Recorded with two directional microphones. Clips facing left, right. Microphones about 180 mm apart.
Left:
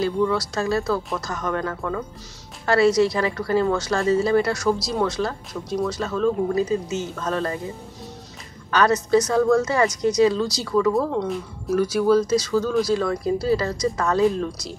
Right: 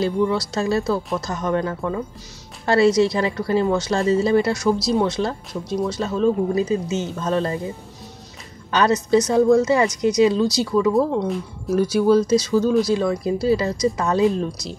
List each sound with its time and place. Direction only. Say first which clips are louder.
0.0 s speech: right 1 dB; 25° right (ahead or behind)
8.6 s speech: right 1 dB; 20° right (ahead or behind)
11.2 s speech: right 2 dB; centre (ahead or behind)
11.7 s speech: right 2 dB; 25° right (ahead or behind)